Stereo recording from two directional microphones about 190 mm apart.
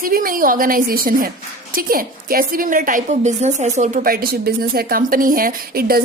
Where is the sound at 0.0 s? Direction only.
50° right (ahead or behind).